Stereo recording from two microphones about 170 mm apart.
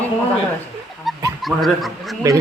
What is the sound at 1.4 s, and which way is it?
Speech, centre (ahead or behind).